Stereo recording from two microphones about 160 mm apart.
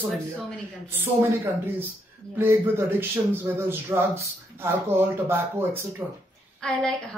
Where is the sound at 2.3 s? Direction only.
15° right (ahead or behind).